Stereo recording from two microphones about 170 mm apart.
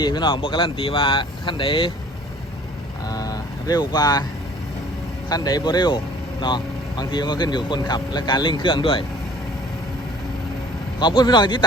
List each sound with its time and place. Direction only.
0.0 s speech: 25° left (ahead or behind)
3.1 s vehicle: 20° left (ahead or behind)
5.3 s speech: 20° left (ahead or behind)
11.0 s speech: 25° left (ahead or behind)